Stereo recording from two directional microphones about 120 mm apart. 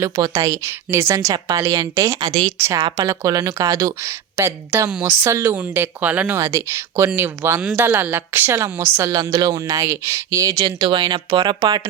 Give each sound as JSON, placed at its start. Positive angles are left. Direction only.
{"t": 0.0, "sound": "speech", "side_deg": -30}
{"t": 6.4, "sound": "speech", "side_deg": -25}
{"t": 9.1, "sound": "speech", "side_deg": -30}